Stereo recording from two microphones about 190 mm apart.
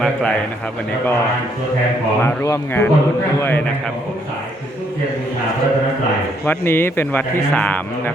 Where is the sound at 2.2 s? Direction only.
15° left (ahead or behind).